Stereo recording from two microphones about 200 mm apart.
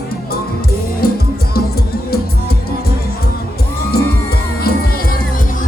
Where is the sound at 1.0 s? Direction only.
50° left (ahead or behind).